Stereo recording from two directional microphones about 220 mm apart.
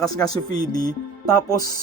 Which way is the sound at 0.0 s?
15° left (ahead or behind).